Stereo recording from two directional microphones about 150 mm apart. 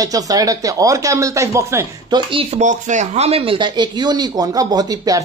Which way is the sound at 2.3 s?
40° right (ahead or behind).